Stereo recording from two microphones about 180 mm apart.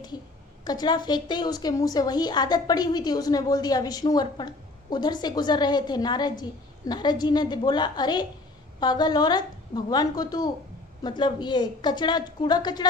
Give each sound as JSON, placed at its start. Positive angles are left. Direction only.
{"t": 0.6, "sound": "a woman's voice", "side_deg": 20}